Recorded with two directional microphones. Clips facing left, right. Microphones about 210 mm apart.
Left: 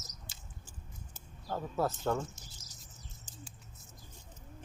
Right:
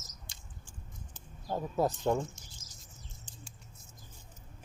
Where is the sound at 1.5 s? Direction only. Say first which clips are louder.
Right 3 dB; 15° right (ahead or behind).